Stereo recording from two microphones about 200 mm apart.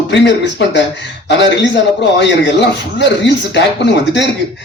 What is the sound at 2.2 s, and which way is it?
Speech, 60° left (ahead or behind).